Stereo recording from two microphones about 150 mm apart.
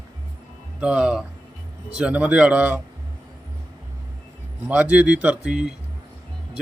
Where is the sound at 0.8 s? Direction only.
5° right (ahead or behind).